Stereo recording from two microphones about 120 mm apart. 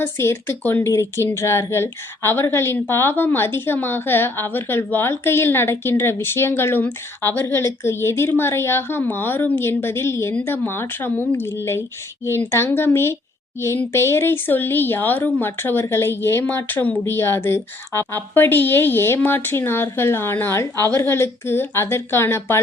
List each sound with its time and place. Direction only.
0.0 s speech: 20° left (ahead or behind)